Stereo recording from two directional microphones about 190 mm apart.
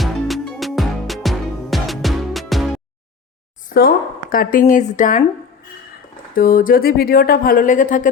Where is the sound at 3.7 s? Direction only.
50° left (ahead or behind).